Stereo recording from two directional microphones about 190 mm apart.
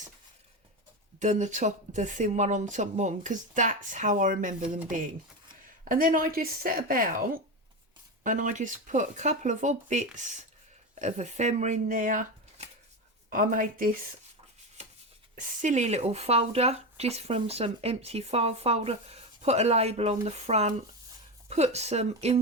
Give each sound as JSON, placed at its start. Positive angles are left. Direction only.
{"t": 1.2, "sound": "a woman's voice", "side_deg": -40}
{"t": 15.4, "sound": "speech", "side_deg": -40}